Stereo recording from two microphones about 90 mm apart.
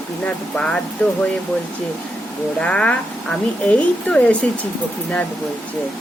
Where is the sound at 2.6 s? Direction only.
10° left (ahead or behind).